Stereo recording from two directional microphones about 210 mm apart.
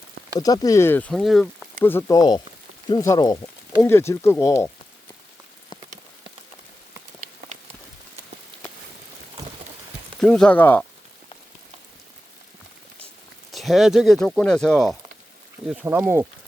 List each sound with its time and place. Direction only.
0.3 s speech: 15° left (ahead or behind); by 1.6 s centre (ahead or behind)
1.8 s speech: 10° left (ahead or behind)
10.2 s speech: 5° left (ahead or behind)
13.5 s speech: centre (ahead or behind)